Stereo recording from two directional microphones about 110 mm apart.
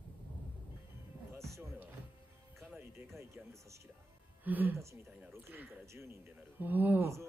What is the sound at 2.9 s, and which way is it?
Music, 25° right (ahead or behind).